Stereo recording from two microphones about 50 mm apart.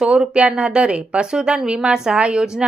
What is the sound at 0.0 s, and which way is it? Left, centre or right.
Speech, centre.